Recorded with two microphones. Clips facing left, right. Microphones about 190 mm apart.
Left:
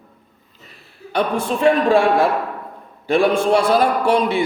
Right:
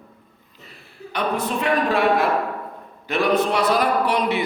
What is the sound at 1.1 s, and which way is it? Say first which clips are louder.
A man's voice: left 4 dB; 30° left (ahead or behind).